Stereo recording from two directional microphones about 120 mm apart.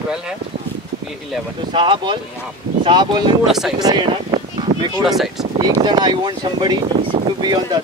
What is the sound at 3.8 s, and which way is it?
Speech, 35° right (ahead or behind).